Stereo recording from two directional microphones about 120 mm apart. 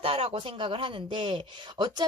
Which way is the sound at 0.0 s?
50° right (ahead or behind).